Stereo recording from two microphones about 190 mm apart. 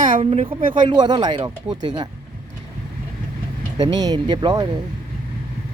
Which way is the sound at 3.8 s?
20° right (ahead or behind).